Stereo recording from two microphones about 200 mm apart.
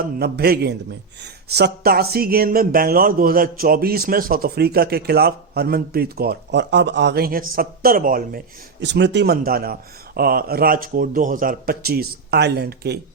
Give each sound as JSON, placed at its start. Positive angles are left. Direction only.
{"t": 0.0, "sound": "speech", "side_deg": -50}
{"t": 8.8, "sound": "speech", "side_deg": -60}